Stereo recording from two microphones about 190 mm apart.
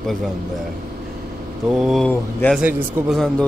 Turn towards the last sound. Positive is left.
turn(degrees=0)  # may be behind; listen again after turning